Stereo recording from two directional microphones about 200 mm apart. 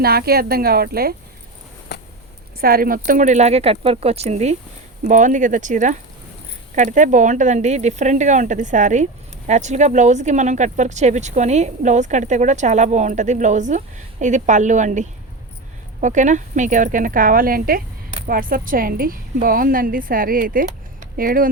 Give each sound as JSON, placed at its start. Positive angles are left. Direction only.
{"t": 0.0, "sound": "a woman's voice", "side_deg": -50}
{"t": 1.9, "sound": "a sound", "side_deg": 55}
{"t": 2.6, "sound": "a woman's voice", "side_deg": -45}